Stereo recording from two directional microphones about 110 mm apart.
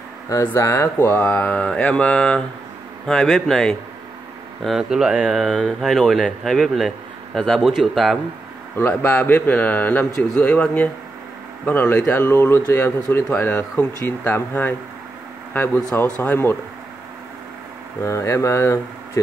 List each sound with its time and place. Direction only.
0.5 s speech: 25° left (ahead or behind); by 8.2 s centre (ahead or behind)
8.7 s speech: 15° left (ahead or behind)
18.0 s speech: 25° left (ahead or behind)